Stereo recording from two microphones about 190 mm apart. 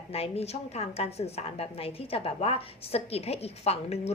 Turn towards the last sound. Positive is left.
turn(degrees=35)  # may be behind; listen again after turning